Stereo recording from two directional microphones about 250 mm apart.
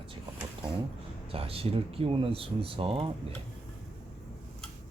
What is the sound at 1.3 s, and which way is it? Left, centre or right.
Speech, right.